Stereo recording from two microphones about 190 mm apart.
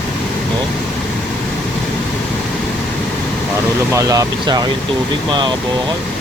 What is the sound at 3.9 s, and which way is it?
Speech, 15° right (ahead or behind).